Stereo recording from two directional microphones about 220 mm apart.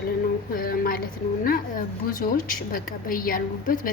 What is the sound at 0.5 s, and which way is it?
Speech, 40° left (ahead or behind).